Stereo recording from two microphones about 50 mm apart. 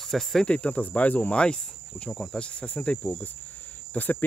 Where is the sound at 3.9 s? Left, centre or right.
Left.